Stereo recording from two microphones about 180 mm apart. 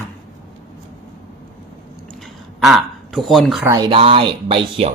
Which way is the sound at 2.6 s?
Centre (ahead or behind).